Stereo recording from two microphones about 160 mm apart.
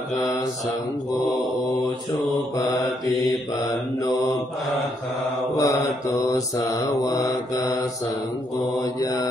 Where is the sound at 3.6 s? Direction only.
25° left (ahead or behind).